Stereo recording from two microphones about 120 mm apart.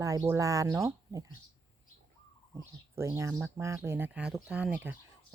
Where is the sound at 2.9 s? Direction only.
25° right (ahead or behind).